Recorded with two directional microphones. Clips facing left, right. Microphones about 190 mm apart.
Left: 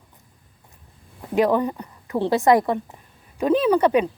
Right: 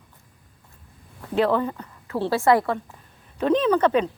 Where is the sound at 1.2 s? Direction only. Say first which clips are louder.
Left 2 dB; 15° left (ahead or behind).